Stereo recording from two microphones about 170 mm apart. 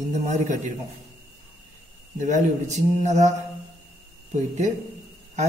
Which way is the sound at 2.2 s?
45° right (ahead or behind).